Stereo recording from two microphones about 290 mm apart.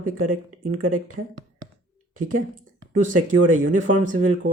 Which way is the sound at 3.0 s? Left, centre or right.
Right.